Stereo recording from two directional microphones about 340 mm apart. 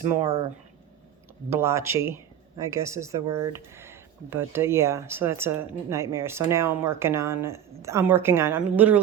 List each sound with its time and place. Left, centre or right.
0.2 s speech: centre
1.5 s speech: centre